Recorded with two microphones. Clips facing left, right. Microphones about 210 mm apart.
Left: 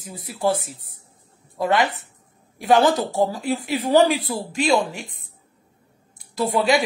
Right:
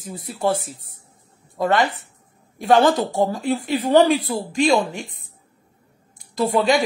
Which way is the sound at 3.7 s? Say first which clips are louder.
Right 2 dB; 10° left (ahead or behind).